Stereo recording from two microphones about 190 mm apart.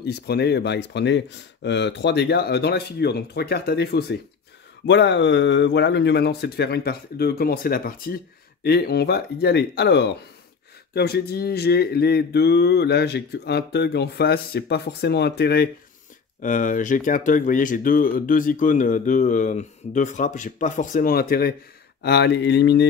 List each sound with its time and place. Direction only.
0.0 s speech: 60° left (ahead or behind)
4.8 s speech: 70° left (ahead or behind)
16.3 s speech: 45° left (ahead or behind); by 22.8 s 65° left (ahead or behind)